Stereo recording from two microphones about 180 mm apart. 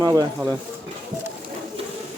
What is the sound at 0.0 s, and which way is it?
Speech, 20° right (ahead or behind).